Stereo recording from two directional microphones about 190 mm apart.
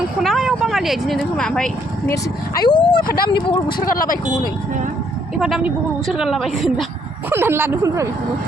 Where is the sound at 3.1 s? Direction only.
50° left (ahead or behind).